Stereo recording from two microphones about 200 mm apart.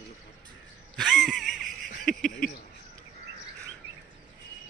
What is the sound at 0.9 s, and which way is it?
Wheeze, centre (ahead or behind).